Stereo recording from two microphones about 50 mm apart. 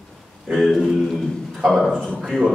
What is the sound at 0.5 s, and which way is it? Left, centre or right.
A man's voice, centre.